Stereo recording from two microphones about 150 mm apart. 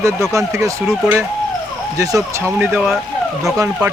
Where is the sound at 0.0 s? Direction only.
20° right (ahead or behind).